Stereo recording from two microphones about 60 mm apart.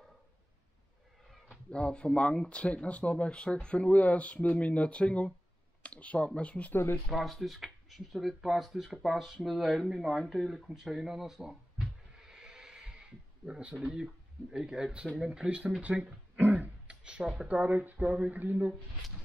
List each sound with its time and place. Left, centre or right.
1.7 s speech: centre
6.7 s speech: left
7.1 s speech: centre
15.8 s throat clearing: right
16.8 s a sound: centre
17.5 s speech: right